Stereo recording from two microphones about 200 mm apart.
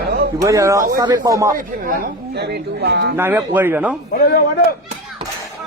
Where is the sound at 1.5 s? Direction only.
45° right (ahead or behind).